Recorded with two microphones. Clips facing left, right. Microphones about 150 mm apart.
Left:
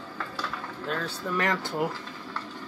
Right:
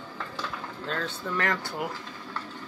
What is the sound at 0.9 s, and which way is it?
Speech, 10° left (ahead or behind).